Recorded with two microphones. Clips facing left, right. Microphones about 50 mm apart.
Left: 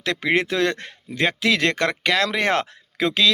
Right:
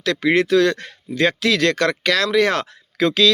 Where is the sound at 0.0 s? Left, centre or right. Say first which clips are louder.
Right 4 dB; left.